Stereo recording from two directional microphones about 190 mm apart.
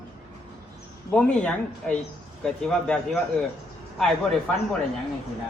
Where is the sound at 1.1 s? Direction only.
5° left (ahead or behind).